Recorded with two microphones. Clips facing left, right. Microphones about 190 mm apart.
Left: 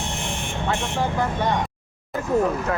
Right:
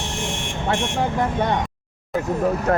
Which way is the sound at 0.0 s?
90° right.